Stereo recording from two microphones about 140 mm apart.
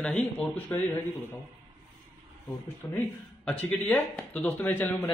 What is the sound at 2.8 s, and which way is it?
Speech, 20° left (ahead or behind).